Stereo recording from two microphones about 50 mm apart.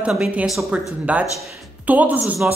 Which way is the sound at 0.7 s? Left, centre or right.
Right.